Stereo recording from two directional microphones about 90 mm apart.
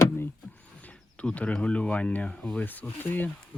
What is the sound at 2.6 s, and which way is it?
Speech, 20° left (ahead or behind).